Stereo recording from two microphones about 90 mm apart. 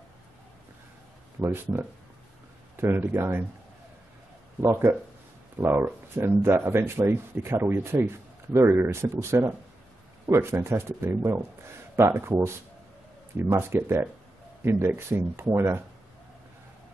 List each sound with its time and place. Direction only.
1.4 s speech: 25° right (ahead or behind)
4.6 s speech: 25° right (ahead or behind)